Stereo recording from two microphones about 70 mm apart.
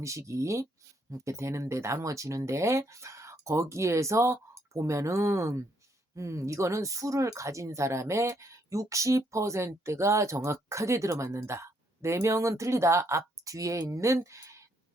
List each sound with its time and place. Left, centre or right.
0.0 s speech: right